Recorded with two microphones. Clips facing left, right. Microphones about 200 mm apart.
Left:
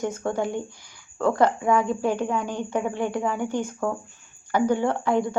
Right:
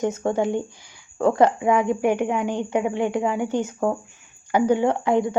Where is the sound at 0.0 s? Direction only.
15° right (ahead or behind).